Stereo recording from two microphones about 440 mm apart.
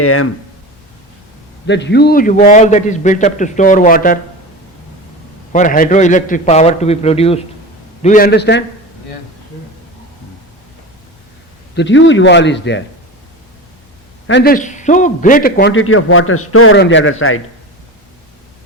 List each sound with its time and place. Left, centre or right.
0.0 s a man's voice: left
1.6 s a man's voice: left
5.5 s a man's voice: centre
11.7 s a man's voice: left
14.3 s a man's voice: left